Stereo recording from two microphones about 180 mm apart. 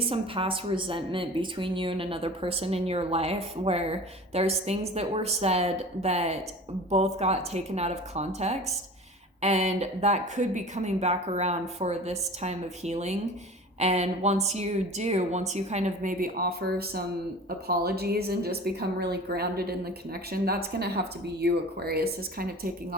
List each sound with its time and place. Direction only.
0.0 s a woman's voice: 30° right (ahead or behind); by 23.0 s 55° right (ahead or behind)